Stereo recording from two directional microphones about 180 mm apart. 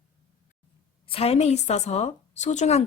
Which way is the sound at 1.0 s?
30° left (ahead or behind).